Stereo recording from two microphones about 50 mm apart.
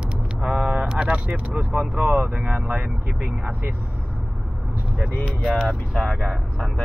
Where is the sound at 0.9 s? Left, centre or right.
Right.